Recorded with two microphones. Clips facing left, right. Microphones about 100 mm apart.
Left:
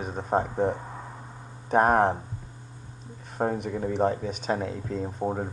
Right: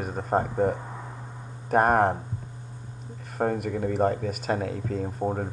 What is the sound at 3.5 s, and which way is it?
Speech, 50° right (ahead or behind).